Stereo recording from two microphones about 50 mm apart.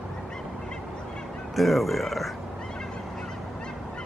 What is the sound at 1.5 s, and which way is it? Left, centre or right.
Speech, centre.